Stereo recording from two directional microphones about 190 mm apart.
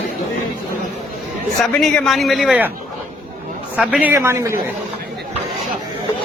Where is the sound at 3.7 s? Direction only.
5° right (ahead or behind).